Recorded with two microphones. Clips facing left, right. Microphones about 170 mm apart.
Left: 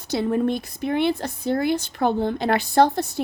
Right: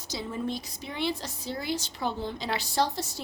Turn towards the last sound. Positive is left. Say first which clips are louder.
# left 10 dB
turn(degrees=60)  # may be behind; listen again after turning